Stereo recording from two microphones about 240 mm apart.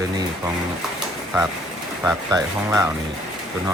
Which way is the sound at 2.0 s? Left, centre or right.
Centre.